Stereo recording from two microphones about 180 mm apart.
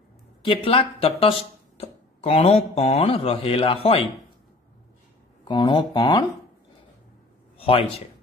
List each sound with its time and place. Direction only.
0.4 s speech: 30° left (ahead or behind)
5.5 s speech: 25° left (ahead or behind)
7.5 s a sound: 30° left (ahead or behind)